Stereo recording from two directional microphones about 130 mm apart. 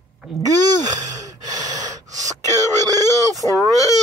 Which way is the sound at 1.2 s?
30° right (ahead or behind).